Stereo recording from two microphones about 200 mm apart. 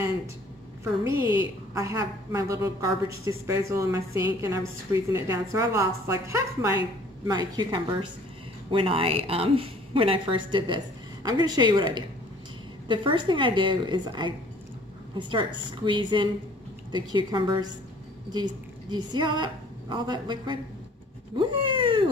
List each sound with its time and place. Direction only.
1.0 s a woman's voice: 15° right (ahead or behind)
21.4 s cat: 25° right (ahead or behind)